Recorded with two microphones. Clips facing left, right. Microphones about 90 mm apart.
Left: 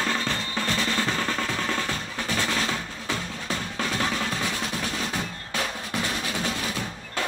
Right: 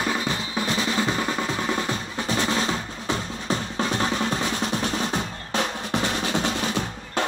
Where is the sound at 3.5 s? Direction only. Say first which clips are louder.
Right 4 dB; 25° right (ahead or behind).